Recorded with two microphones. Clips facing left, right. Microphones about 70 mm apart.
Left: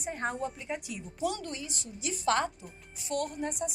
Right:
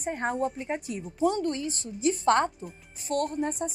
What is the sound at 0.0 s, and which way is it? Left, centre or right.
A woman's voice, right.